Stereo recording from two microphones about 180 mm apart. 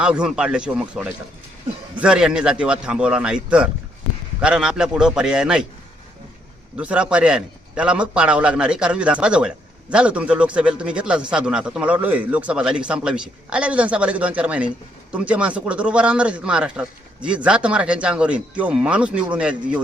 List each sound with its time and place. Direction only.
0.0 s speech: 5° right (ahead or behind)
6.7 s speech: 5° right (ahead or behind)